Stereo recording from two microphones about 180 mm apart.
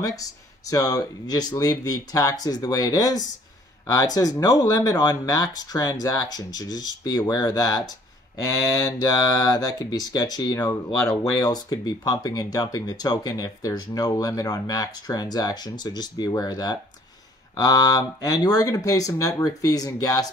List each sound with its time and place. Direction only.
0.0 s speech: 20° left (ahead or behind)